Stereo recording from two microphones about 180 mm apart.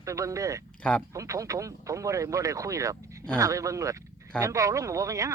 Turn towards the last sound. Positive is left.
turn(degrees=-15)  # may be behind; listen again after turning